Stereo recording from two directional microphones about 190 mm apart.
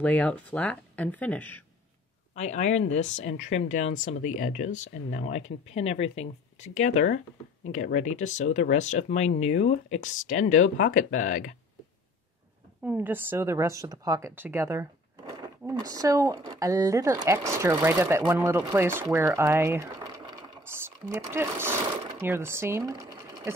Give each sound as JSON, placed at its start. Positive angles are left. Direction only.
{"t": 0.0, "sound": "speech", "side_deg": 10}
{"t": 2.3, "sound": "speech", "side_deg": 40}
{"t": 12.8, "sound": "speech", "side_deg": -10}